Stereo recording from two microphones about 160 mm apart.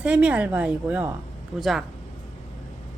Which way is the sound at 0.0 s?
5° right (ahead or behind).